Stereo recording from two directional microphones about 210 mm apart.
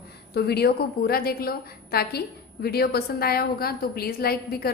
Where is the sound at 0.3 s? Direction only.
50° left (ahead or behind).